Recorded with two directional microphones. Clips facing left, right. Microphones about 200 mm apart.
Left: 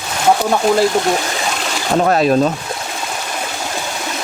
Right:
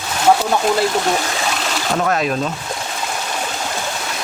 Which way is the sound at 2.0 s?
35° left (ahead or behind).